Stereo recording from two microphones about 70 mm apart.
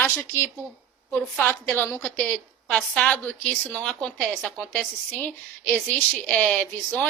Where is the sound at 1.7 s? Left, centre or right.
Left.